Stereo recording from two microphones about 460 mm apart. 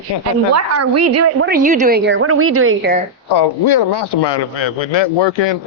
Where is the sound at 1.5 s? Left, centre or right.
Centre.